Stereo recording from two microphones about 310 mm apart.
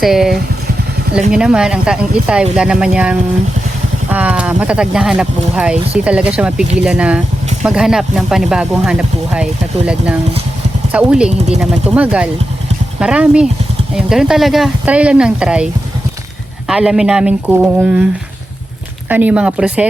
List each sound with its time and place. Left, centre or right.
0.0 s speech: centre
11.3 s speech: right
11.6 s speech: centre